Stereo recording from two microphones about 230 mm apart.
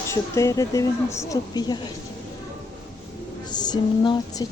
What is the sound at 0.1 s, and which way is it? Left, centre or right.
Speech, centre.